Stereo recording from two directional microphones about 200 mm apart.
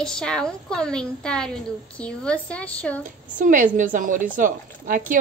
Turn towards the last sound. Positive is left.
turn(degrees=-45)  # may be behind; listen again after turning